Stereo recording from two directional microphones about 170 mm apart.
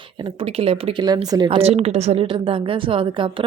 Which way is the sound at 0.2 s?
30° right (ahead or behind).